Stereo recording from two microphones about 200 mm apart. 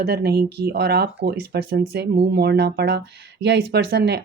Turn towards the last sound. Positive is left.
turn(degrees=-55)  # may be behind; listen again after turning